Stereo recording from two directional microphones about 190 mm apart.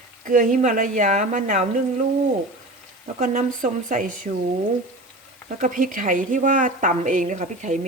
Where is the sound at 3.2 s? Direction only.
45° right (ahead or behind).